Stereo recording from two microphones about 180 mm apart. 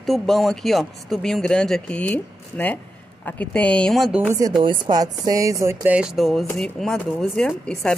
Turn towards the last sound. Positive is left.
turn(degrees=5)  # may be behind; listen again after turning